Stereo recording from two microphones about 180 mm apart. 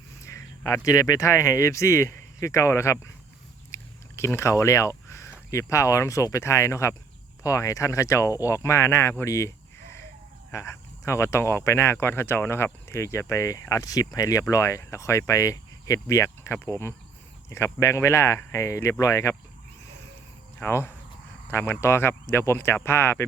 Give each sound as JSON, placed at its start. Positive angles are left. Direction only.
{"t": 0.2, "sound": "speech", "side_deg": 15}
{"t": 3.7, "sound": "a sound", "side_deg": 15}
{"t": 5.5, "sound": "speech", "side_deg": 15}
{"t": 10.5, "sound": "speech", "side_deg": 15}
{"t": 20.6, "sound": "speech", "side_deg": 15}